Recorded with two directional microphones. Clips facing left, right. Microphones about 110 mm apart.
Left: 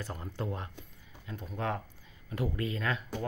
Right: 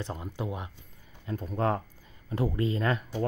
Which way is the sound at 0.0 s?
20° right (ahead or behind).